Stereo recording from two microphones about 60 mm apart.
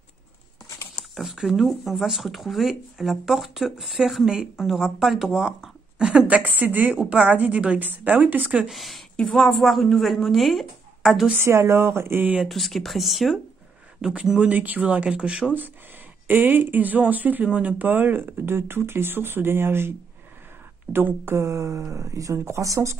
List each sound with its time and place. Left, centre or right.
1.1 s speech: centre; by 8.6 s right
8.6 s speech: centre
11.4 s speech: right
12.4 s speech: centre
14.0 s speech: centre
14.5 s speech: right
16.3 s speech: right
20.9 s speech: right